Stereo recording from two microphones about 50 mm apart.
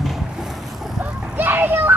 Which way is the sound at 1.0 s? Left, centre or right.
Right.